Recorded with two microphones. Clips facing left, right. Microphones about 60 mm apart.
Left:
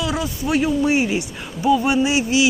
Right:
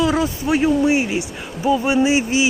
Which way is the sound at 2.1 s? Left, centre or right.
Right.